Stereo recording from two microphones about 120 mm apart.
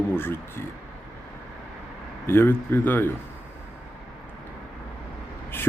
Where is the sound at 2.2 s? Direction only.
20° left (ahead or behind).